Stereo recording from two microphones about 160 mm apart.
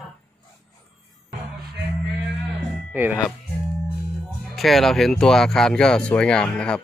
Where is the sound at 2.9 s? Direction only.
10° right (ahead or behind).